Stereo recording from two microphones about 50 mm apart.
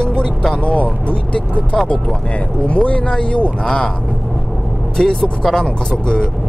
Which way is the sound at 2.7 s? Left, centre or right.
Left.